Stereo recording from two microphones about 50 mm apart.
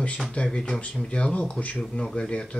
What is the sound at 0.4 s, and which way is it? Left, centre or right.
Speech, left.